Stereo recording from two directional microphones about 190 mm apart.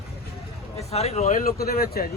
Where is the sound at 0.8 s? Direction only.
35° left (ahead or behind); by 2.1 s 50° left (ahead or behind).